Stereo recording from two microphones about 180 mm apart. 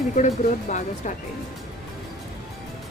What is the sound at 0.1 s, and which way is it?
Speech, 45° left (ahead or behind).